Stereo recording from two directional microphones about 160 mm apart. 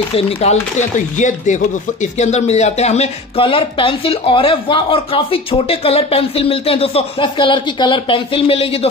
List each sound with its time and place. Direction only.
0.1 s speech: 45° left (ahead or behind)